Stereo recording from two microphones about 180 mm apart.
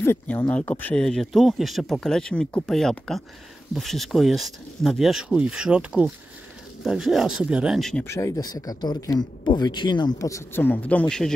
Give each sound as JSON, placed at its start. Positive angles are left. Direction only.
{"t": 0.0, "sound": "speech", "side_deg": 15}
{"t": 8.0, "sound": "speech", "side_deg": 15}